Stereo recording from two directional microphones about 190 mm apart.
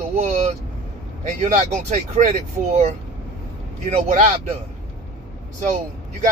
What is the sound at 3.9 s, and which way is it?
Speech, 35° right (ahead or behind).